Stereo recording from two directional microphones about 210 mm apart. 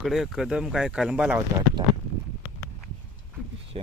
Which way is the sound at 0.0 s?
Centre (ahead or behind).